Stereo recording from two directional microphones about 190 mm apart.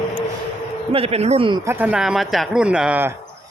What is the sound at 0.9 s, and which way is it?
Speech, 30° right (ahead or behind).